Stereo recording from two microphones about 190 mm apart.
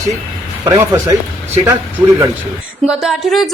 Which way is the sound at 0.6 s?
15° right (ahead or behind).